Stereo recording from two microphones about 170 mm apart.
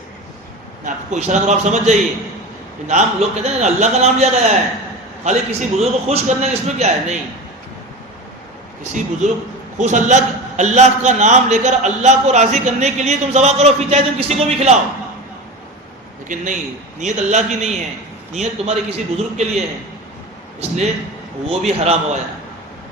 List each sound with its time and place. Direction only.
0.9 s a man's voice: 45° right (ahead or behind)
8.8 s a man's voice: 45° right (ahead or behind)
16.3 s a man's voice: 45° right (ahead or behind)